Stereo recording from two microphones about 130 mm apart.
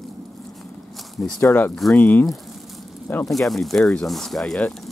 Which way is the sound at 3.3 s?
Centre (ahead or behind).